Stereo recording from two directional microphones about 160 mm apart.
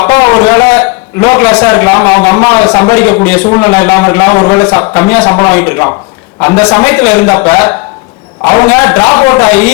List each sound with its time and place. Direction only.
0.0 s a man's voice: 20° left (ahead or behind)
6.8 s a man's voice: 10° left (ahead or behind)